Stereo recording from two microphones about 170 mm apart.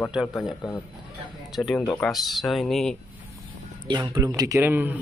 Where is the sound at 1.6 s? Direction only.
Centre (ahead or behind).